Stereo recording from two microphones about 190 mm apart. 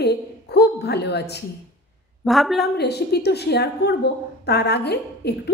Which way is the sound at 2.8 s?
60° left (ahead or behind).